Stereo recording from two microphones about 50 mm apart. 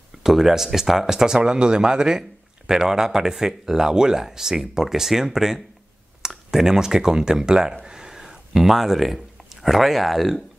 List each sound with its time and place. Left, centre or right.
0.2 s speech: centre